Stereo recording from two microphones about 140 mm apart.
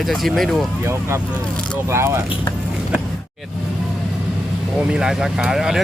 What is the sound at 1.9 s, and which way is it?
Speech, 20° right (ahead or behind).